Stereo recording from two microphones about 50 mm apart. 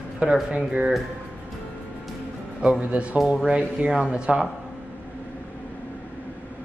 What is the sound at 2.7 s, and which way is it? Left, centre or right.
A man's voice, right.